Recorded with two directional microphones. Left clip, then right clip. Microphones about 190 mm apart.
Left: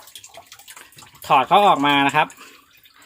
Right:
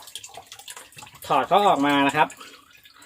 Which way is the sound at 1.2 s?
30° left (ahead or behind).